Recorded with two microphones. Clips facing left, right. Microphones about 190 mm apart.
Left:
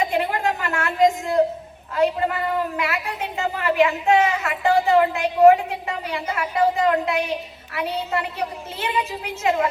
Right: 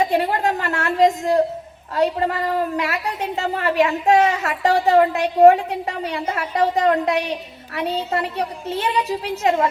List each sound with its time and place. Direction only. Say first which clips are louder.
0.1 s a woman's voice: right 3 dB; 35° right (ahead or behind)